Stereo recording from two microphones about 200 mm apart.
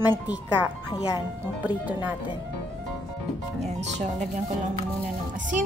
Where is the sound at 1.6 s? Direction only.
10° right (ahead or behind).